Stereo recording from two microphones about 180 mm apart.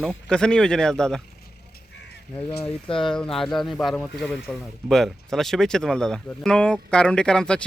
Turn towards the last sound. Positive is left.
turn(degrees=5)  # may be behind; listen again after turning